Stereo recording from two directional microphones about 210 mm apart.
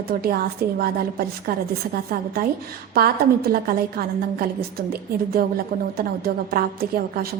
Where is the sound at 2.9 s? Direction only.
45° right (ahead or behind).